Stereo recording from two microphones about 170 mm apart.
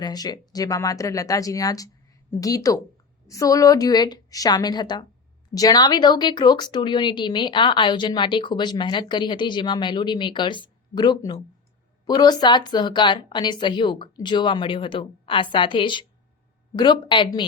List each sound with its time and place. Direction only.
0.0 s speech: 25° left (ahead or behind)